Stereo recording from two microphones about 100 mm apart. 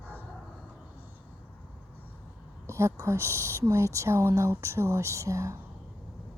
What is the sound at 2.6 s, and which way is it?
Speech, 25° right (ahead or behind).